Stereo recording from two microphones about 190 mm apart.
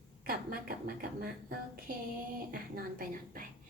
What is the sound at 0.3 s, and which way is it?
Speech, 50° right (ahead or behind).